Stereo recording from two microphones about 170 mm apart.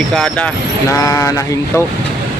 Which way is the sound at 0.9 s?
20° left (ahead or behind).